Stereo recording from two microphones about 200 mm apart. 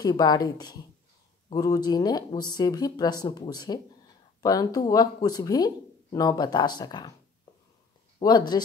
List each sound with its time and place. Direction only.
0.0 s speech: 20° left (ahead or behind)
8.2 s speech: 20° left (ahead or behind)